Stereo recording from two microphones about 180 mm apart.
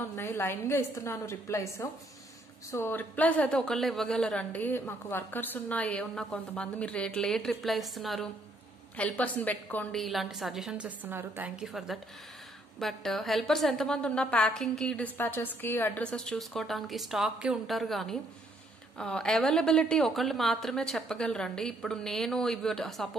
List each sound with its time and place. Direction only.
0.1 s a woman's voice: 15° left (ahead or behind)